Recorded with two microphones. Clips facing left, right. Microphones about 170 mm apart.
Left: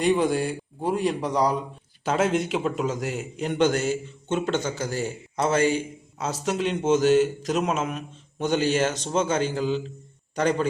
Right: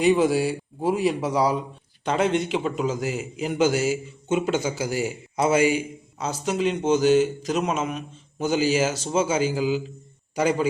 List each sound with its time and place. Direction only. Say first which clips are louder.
0.0 s a man's voice: right 3 dB; 5° right (ahead or behind)